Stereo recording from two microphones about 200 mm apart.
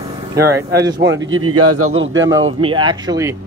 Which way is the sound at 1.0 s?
70° right (ahead or behind).